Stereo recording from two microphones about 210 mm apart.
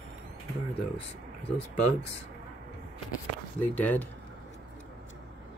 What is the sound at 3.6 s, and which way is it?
Speech, 10° left (ahead or behind).